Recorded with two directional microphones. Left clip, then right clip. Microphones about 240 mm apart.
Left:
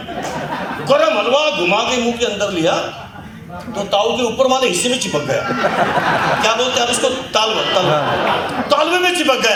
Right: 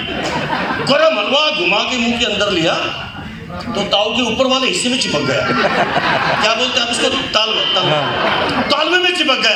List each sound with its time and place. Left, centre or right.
0.9 s a man's voice: left
3.8 s a man's voice: left
6.4 s a man's voice: left